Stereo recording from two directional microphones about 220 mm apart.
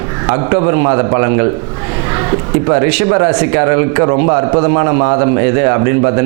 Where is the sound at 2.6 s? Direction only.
20° right (ahead or behind).